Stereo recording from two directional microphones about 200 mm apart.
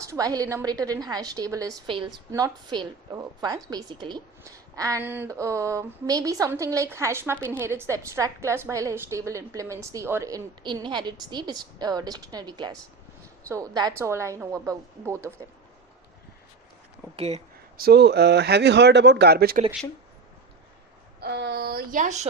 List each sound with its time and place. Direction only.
0.0 s a woman's voice: 15° right (ahead or behind)
17.2 s speech: 35° right (ahead or behind)
17.7 s speech: 55° right (ahead or behind)
21.2 s a sound: 55° right (ahead or behind); by 22.3 s 35° right (ahead or behind)